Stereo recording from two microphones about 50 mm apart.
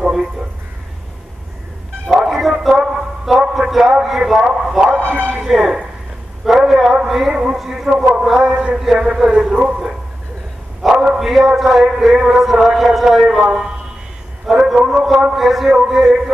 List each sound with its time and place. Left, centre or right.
0.0 s a sound: centre
2.0 s music: centre
2.4 s a sound: centre
4.5 s a man's voice: centre
5.0 s speech: right
5.3 s speech: centre
6.4 s a sound: centre
7.1 s a man's voice: centre
8.7 s a man's voice: centre
14.4 s a sound: centre
15.0 s speech: centre
15.3 s a man's voice: centre